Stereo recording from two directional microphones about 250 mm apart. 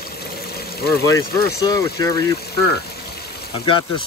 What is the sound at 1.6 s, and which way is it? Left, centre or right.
Speech, centre.